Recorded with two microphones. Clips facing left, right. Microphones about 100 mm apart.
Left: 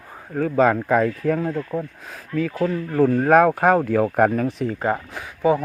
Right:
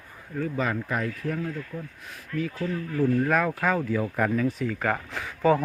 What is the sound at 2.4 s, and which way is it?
Speech, 75° left (ahead or behind).